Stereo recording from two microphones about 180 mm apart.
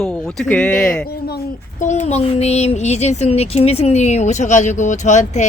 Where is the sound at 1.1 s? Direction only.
60° left (ahead or behind).